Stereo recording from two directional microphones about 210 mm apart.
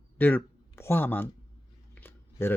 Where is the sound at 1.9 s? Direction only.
10° left (ahead or behind).